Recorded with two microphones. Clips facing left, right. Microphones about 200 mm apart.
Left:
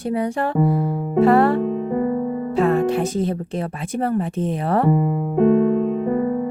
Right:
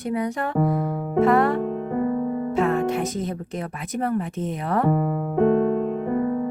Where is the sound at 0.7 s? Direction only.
30° left (ahead or behind).